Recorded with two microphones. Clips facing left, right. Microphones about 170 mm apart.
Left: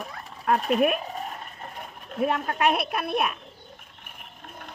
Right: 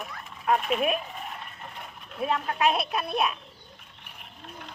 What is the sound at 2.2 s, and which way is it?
A woman's voice, 55° left (ahead or behind).